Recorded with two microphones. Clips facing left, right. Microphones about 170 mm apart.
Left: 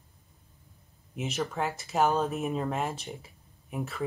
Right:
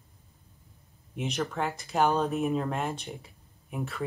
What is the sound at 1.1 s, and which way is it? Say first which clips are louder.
A woman's voice: right 1 dB; 5° left (ahead or behind).